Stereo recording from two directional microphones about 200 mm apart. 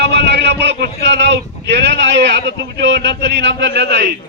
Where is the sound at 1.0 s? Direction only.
60° right (ahead or behind).